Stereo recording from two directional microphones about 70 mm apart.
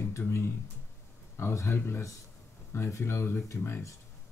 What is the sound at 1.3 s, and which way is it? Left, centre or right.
Speech, left.